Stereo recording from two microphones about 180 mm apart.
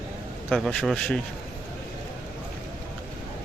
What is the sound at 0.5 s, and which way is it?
Speech, 5° left (ahead or behind).